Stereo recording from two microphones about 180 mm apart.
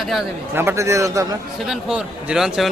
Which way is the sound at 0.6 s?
15° right (ahead or behind).